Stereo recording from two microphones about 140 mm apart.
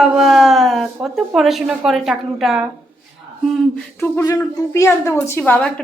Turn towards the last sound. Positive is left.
turn(degrees=15)  # may be behind; listen again after turning